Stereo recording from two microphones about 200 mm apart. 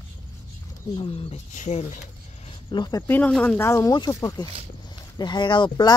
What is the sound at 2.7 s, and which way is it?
Speech, 20° left (ahead or behind).